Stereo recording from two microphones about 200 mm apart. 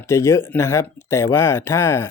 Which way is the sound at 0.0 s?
15° left (ahead or behind).